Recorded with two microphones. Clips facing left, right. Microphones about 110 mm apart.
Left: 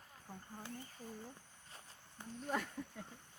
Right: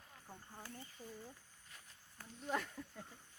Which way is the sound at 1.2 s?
30° left (ahead or behind).